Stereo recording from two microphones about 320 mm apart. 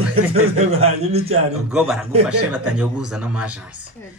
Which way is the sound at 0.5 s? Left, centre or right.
Centre.